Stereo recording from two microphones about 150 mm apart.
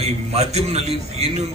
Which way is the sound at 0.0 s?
45° right (ahead or behind).